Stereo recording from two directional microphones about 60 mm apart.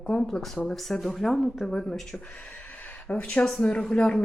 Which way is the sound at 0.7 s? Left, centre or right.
Centre.